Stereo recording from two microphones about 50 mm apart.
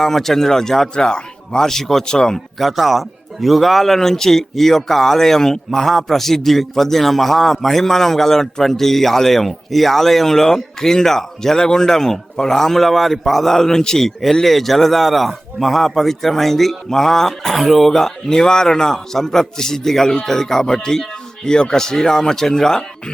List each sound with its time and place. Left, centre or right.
0.0 s speech: centre
2.6 s a man's voice: centre